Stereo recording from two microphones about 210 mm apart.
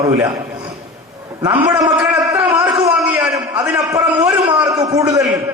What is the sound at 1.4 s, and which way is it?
Speech, 20° right (ahead or behind).